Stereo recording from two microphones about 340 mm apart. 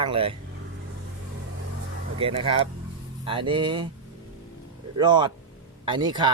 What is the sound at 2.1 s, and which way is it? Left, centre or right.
Speech, centre.